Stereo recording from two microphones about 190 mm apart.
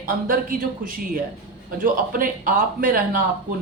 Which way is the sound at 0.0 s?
45° right (ahead or behind).